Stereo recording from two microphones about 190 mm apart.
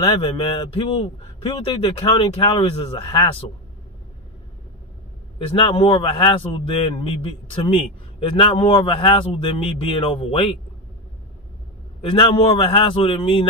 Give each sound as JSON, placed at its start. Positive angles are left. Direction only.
{"t": 0.2, "sound": "a man's voice", "side_deg": 25}
{"t": 5.4, "sound": "a man's voice", "side_deg": 25}
{"t": 12.0, "sound": "a man's voice", "side_deg": 25}